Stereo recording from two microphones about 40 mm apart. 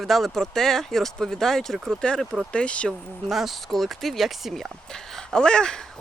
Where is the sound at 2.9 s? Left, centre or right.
Centre.